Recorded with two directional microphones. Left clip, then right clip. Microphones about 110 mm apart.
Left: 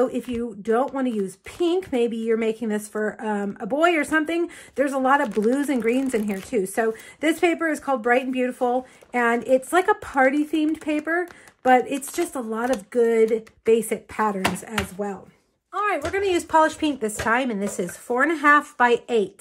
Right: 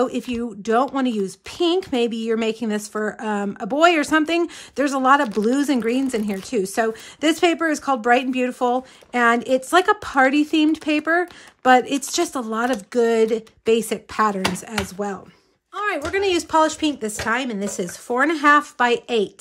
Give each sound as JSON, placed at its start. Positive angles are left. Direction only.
{"t": 0.0, "sound": "speech", "side_deg": -10}
{"t": 0.3, "sound": "speech", "side_deg": -20}
{"t": 1.2, "sound": "speech", "side_deg": -10}
{"t": 11.1, "sound": "speech", "side_deg": -25}
{"t": 12.9, "sound": "speech", "side_deg": -30}